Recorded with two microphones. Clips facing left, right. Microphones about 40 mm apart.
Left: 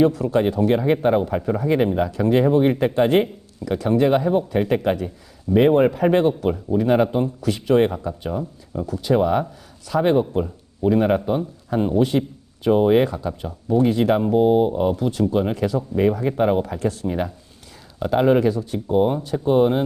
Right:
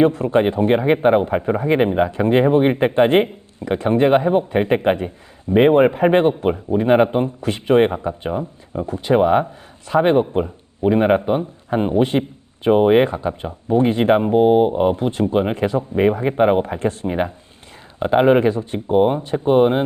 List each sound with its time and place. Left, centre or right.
0.0 s speech: right